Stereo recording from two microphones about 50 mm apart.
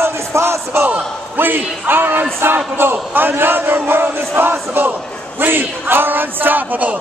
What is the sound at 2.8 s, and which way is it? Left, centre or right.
A man's voice, right.